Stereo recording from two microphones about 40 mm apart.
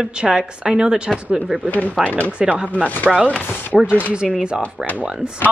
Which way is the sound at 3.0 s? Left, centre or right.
Centre.